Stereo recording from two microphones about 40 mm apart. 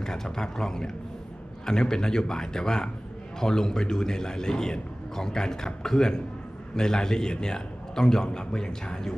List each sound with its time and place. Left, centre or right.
0.0 s a man's voice: centre